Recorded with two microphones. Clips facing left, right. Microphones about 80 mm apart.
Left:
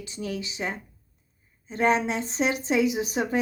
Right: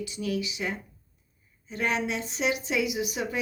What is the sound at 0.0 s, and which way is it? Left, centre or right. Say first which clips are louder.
Speech: right 2 dB; left.